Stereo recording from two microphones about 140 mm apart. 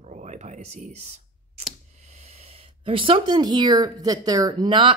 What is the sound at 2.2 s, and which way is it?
Speech, 45° right (ahead or behind).